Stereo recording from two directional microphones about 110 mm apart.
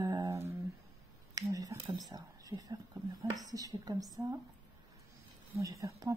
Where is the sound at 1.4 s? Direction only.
35° right (ahead or behind).